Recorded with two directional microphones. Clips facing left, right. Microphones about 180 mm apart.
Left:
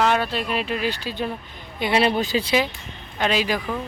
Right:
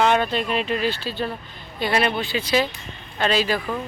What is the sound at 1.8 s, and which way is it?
Speech, 25° left (ahead or behind).